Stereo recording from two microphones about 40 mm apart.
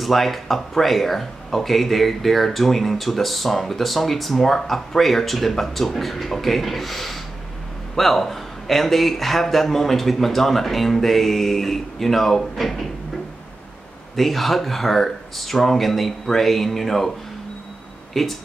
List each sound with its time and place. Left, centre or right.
0.0 s speech: centre
14.1 s speech: centre
18.1 s speech: centre